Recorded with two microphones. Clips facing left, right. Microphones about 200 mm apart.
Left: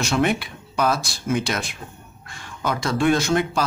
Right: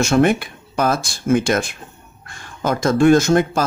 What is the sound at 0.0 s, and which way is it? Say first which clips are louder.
A man's voice: right 6 dB; 50° right (ahead or behind).